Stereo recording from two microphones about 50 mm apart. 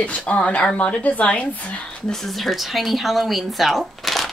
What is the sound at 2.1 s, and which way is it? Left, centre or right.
Speech, centre.